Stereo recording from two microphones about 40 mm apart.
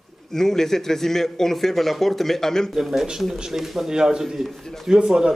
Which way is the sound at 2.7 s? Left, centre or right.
Centre.